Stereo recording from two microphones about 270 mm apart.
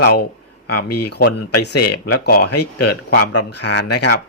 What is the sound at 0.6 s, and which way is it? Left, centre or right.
Speech, left.